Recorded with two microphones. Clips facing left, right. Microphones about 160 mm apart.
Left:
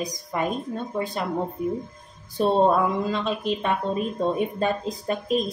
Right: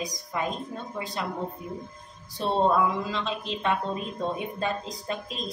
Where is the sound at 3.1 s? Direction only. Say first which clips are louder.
Left 6 dB; 50° left (ahead or behind).